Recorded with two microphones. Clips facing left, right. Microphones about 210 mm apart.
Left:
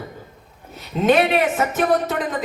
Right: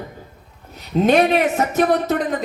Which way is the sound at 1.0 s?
40° right (ahead or behind).